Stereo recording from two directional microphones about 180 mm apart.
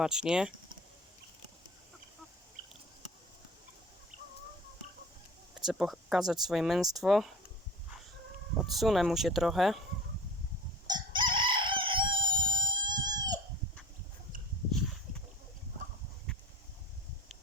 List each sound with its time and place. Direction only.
0.0 s speech: 5° right (ahead or behind)
5.5 s speech: centre (ahead or behind)
8.5 s speech: centre (ahead or behind)
10.8 s chicken: 25° right (ahead or behind)